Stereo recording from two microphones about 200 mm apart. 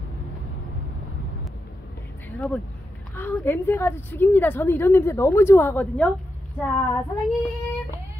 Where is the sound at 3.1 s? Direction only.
10° left (ahead or behind).